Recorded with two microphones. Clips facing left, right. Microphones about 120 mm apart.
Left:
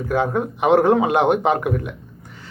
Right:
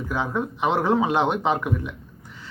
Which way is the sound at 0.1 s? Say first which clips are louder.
Left 6 dB; 55° left (ahead or behind).